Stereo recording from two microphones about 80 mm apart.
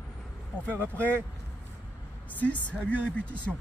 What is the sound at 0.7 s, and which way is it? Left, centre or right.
Speech, right.